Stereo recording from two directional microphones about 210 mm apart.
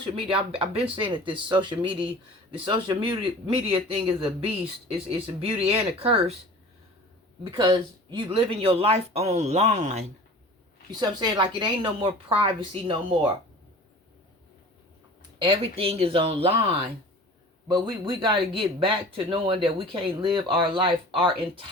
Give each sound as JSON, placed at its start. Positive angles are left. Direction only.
{"t": 0.0, "sound": "speech", "side_deg": -25}
{"t": 7.5, "sound": "speech", "side_deg": -20}
{"t": 10.9, "sound": "speech", "side_deg": -20}
{"t": 15.4, "sound": "speech", "side_deg": -25}